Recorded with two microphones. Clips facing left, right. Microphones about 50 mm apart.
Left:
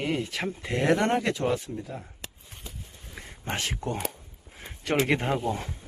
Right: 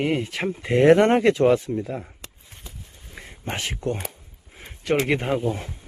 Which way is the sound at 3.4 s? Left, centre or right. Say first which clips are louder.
Right 3 dB; centre.